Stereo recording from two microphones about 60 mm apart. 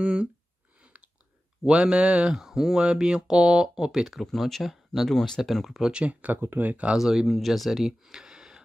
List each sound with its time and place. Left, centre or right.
0.0 s speech: centre
1.7 s speech: centre
6.0 s speech: right
7.0 s speech: centre